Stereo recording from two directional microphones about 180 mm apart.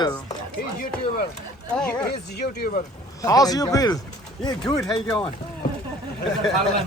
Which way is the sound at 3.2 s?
20° left (ahead or behind).